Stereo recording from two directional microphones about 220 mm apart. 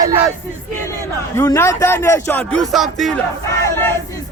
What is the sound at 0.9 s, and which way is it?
Speech, 10° left (ahead or behind).